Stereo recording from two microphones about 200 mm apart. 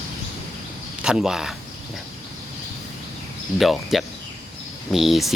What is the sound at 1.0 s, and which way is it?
Speech, 5° right (ahead or behind).